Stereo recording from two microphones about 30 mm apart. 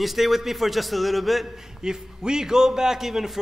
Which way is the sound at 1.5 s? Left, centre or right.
Centre.